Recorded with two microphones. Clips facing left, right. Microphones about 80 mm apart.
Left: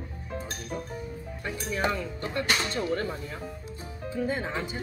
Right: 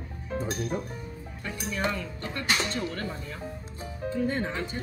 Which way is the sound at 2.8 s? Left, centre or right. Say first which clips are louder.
Left 4 dB; centre.